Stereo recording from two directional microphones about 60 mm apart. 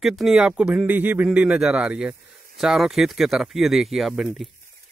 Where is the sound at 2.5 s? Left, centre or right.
Centre.